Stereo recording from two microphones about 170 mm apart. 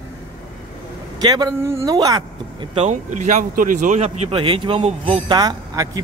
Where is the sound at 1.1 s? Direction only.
25° right (ahead or behind).